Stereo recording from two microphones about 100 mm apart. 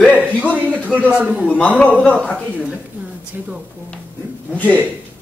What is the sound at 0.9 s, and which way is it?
Speech, 15° right (ahead or behind).